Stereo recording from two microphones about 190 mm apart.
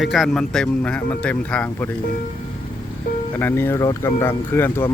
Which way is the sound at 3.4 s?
10° left (ahead or behind).